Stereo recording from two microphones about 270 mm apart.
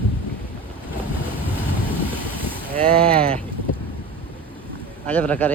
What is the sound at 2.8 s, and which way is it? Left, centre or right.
Speech, right.